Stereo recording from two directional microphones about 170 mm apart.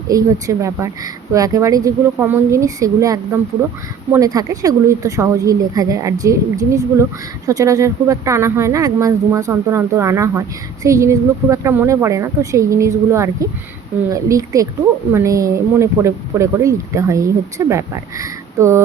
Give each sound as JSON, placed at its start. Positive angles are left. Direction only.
{"t": 0.1, "sound": "speech", "side_deg": -20}